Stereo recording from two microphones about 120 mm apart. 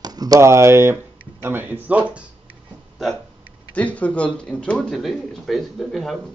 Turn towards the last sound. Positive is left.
turn(degrees=0)  # may be behind; listen again after turning